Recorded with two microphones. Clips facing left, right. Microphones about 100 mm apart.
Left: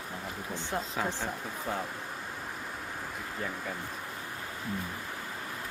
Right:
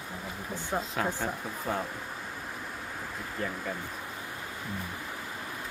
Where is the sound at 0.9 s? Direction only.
Centre (ahead or behind).